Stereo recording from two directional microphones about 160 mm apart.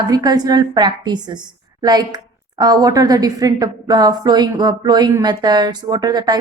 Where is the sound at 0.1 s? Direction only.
25° right (ahead or behind).